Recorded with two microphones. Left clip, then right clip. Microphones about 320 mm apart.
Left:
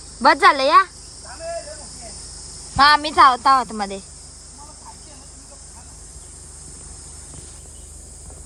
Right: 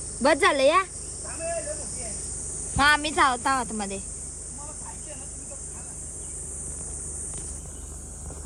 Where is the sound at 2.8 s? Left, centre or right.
Centre.